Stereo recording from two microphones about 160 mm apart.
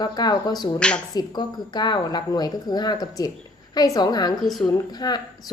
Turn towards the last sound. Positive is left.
turn(degrees=25)  # may be behind; listen again after turning